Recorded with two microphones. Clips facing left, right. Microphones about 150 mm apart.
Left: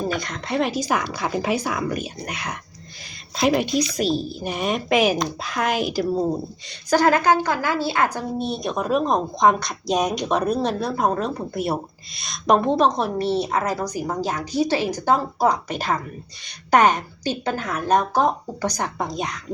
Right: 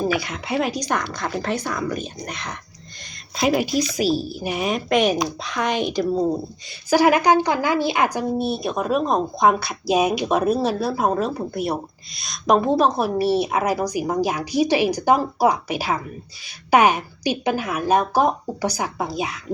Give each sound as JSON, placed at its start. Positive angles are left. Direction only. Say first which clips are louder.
{"t": 0.0, "sound": "speech", "louder": "right 3 dB", "side_deg": -5}
{"t": 6.9, "sound": "speech", "louder": "right 2 dB", "side_deg": -10}